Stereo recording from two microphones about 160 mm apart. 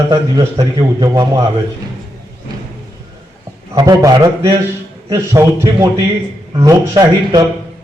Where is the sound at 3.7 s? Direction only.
25° right (ahead or behind).